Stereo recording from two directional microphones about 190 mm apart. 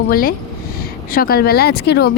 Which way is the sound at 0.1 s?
50° left (ahead or behind).